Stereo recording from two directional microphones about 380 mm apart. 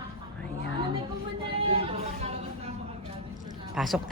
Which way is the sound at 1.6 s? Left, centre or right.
Centre.